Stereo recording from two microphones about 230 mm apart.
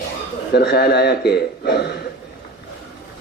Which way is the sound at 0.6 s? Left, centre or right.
Left.